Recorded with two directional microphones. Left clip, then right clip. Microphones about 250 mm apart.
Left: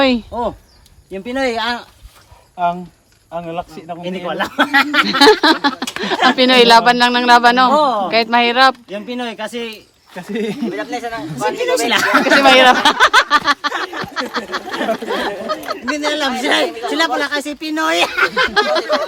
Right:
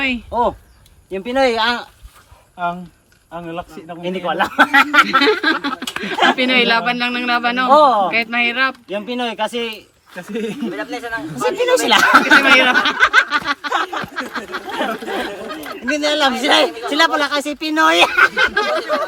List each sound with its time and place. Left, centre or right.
0.3 s speech: centre
3.3 s speech: left
4.0 s speech: centre
10.3 s speech: left
11.6 s speech: centre